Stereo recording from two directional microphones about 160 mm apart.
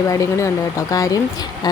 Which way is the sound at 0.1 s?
20° left (ahead or behind).